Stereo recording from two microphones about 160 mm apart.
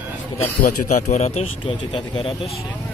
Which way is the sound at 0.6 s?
45° left (ahead or behind).